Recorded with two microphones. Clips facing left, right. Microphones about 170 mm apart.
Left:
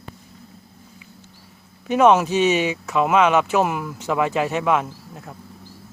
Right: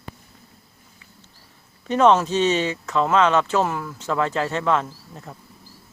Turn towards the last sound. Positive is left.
turn(degrees=10)  # may be behind; listen again after turning